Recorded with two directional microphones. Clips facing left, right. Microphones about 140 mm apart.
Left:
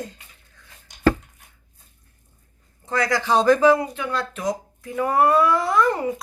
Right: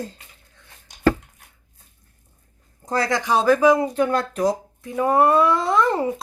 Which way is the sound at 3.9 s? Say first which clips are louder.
Right 7 dB; 45° right (ahead or behind).